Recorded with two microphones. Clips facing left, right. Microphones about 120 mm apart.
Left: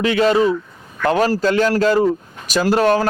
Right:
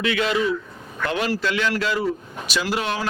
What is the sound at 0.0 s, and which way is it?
Speech, 40° left (ahead or behind).